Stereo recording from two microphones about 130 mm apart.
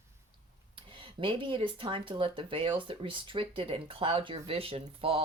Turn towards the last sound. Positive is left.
turn(degrees=-45)  # may be behind; listen again after turning